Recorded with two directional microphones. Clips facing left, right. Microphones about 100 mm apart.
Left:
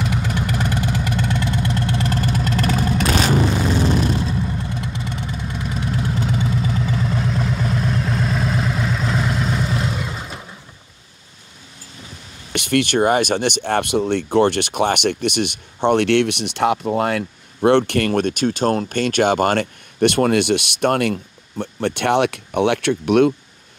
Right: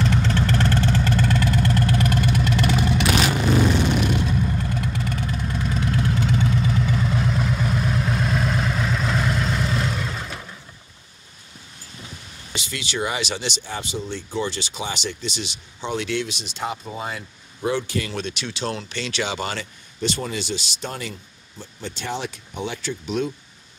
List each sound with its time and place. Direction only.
0.0 s vehicle: 10° left (ahead or behind); by 4.5 s 30° left (ahead or behind)
4.6 s vehicle: 20° left (ahead or behind)
12.5 s speech: 60° left (ahead or behind)